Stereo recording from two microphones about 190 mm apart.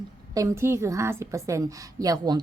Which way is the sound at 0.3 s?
15° right (ahead or behind).